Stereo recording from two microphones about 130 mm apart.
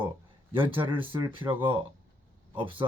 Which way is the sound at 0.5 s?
40° right (ahead or behind).